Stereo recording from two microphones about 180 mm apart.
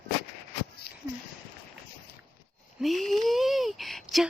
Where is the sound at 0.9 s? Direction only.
65° left (ahead or behind).